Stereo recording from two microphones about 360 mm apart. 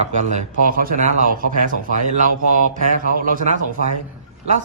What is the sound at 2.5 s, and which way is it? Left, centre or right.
Speech, right.